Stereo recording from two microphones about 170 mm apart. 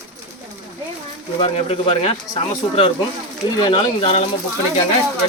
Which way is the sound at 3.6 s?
30° left (ahead or behind).